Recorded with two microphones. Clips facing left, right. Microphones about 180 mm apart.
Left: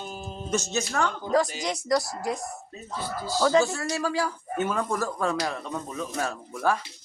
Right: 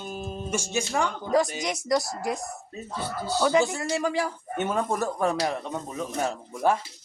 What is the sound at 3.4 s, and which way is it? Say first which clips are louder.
A woman's voice: left 1 dB; 15° right (ahead or behind).